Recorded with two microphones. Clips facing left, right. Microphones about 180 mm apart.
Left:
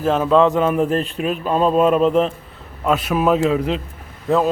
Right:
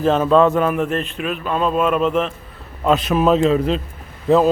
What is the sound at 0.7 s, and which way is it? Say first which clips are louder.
Speech: left 2 dB; 35° left (ahead or behind).